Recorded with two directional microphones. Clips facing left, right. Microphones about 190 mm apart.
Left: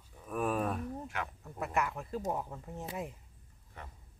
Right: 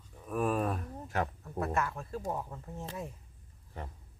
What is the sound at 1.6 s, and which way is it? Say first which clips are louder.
Speech: right 1 dB; 15° left (ahead or behind).